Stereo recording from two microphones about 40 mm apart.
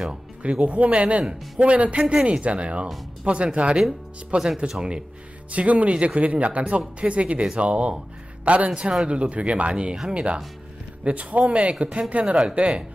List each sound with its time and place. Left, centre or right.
0.1 s speech: right
5.5 s speech: right